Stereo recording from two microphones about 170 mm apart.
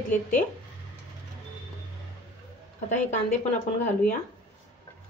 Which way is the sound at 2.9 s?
45° left (ahead or behind).